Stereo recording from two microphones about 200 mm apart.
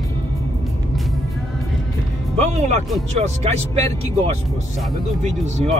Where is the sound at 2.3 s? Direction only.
35° right (ahead or behind).